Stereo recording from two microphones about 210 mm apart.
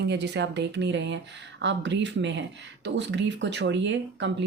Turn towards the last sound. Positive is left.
turn(degrees=-60)  # may be behind; listen again after turning